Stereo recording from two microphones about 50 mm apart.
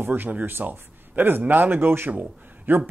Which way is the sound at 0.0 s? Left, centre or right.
Right.